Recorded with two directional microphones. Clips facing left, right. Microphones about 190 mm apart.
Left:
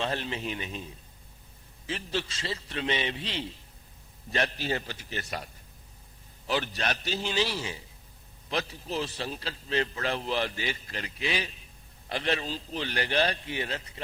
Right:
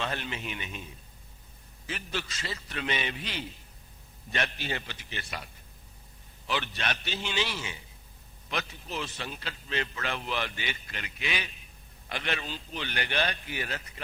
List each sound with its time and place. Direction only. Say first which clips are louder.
0.0 s a man's voice: left 3 dB; 30° left (ahead or behind)
1.9 s a man's voice: left 3 dB; 30° left (ahead or behind)
6.5 s a man's voice: left 3 dB; 40° left (ahead or behind)